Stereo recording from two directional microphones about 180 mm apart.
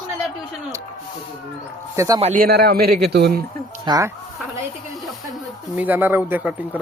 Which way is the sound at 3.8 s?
20° right (ahead or behind).